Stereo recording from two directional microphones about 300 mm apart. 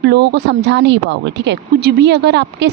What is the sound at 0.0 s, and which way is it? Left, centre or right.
A woman's voice, right.